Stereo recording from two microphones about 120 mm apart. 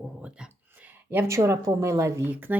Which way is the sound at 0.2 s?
10° right (ahead or behind).